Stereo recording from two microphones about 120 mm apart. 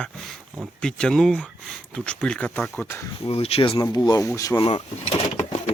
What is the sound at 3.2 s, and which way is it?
Speech, 55° left (ahead or behind).